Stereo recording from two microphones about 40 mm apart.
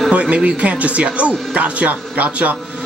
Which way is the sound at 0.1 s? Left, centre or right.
Right.